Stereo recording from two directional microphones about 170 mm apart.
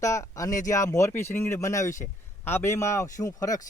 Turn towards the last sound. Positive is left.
turn(degrees=20)  # may be behind; listen again after turning